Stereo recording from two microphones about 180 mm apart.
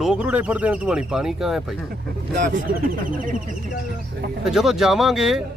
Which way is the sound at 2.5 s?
50° right (ahead or behind).